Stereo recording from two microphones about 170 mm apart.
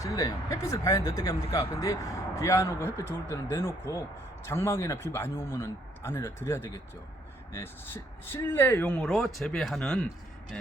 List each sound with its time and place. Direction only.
0.0 s speech: 20° left (ahead or behind)